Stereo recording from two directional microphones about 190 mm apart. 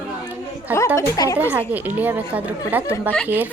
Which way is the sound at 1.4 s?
10° right (ahead or behind).